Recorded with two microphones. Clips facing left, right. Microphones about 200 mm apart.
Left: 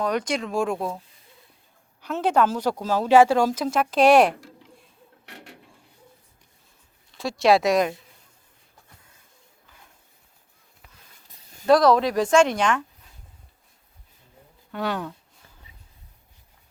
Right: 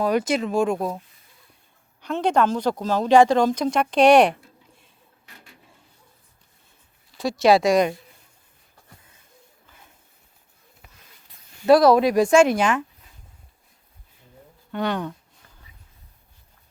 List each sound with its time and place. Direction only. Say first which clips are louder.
0.0 s speech: right 4 dB; 5° right (ahead or behind)
2.0 s a woman's voice: right 1 dB; 5° left (ahead or behind)
5.2 s a sound: left 7 dB; 70° left (ahead or behind)
7.1 s speech: right 2 dB; centre (ahead or behind)
11.6 s speech: right 3 dB; 10° right (ahead or behind)
14.7 s speech: right 3 dB; 5° left (ahead or behind)